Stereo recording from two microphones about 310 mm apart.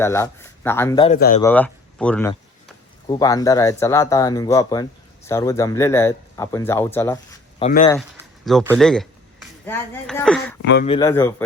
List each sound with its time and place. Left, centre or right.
0.0 s speech: centre
1.4 s speech: centre
7.6 s speech: left
8.2 s speech: centre
10.6 s speech: left
10.8 s speech: centre